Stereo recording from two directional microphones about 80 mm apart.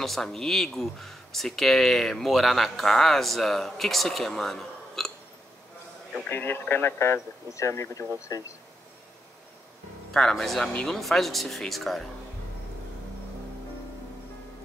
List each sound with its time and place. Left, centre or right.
0.0 s speech: centre
6.3 s speech: left
10.1 s speech: centre